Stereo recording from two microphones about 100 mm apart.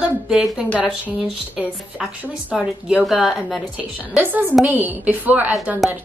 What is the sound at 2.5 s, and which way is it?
A woman's voice, 5° right (ahead or behind).